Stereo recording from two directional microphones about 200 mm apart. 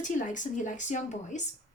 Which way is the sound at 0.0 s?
40° left (ahead or behind).